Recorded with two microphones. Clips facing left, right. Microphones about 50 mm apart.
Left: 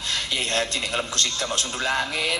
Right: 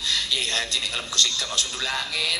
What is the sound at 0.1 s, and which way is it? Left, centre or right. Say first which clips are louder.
A man's voice: left 2 dB; left.